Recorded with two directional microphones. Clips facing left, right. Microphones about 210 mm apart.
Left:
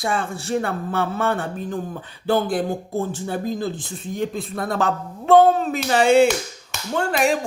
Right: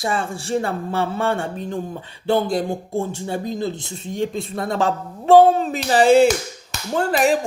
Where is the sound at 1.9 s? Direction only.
20° right (ahead or behind).